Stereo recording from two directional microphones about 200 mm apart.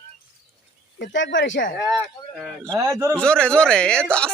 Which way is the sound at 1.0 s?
65° left (ahead or behind).